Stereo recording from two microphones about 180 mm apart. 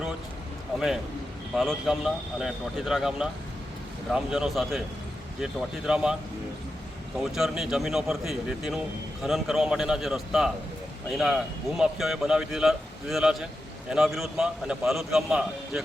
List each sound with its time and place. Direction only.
0.7 s a man's voice: centre (ahead or behind)
7.3 s a man's voice: centre (ahead or behind)